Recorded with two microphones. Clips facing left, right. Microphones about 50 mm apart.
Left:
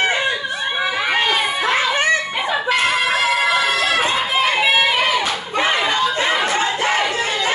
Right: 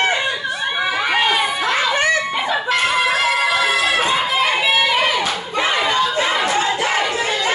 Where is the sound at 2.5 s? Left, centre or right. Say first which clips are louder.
Left 1 dB; centre.